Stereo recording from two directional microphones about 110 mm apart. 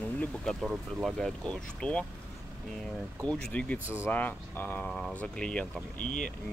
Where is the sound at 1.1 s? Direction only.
5° left (ahead or behind).